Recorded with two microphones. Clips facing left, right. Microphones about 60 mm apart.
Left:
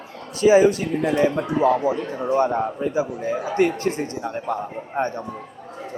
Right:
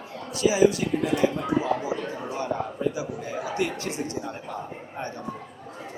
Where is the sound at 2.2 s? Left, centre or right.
Left.